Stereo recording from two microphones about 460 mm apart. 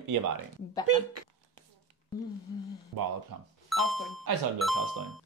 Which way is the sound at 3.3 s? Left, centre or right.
Right.